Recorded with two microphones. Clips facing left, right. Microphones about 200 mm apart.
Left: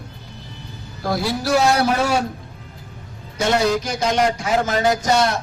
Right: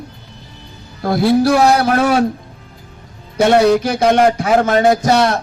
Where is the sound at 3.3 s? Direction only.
60° right (ahead or behind).